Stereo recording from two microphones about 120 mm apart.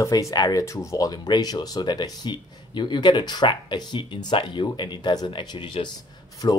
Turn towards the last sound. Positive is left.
turn(degrees=35)  # may be behind; listen again after turning